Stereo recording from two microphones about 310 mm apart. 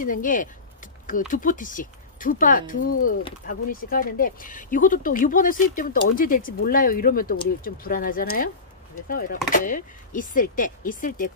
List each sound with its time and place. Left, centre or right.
0.0 s speech: left